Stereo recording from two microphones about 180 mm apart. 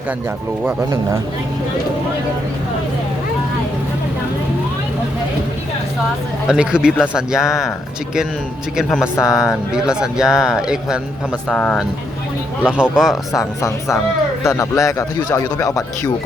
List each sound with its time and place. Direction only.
6.5 s speech: 5° right (ahead or behind)
8.7 s speech: centre (ahead or behind)
9.1 s speech: 15° left (ahead or behind)
9.7 s speech: 5° right (ahead or behind)
11.4 s speech: 10° left (ahead or behind)
12.6 s speech: 5° right (ahead or behind)
13.3 s speech: 20° left (ahead or behind)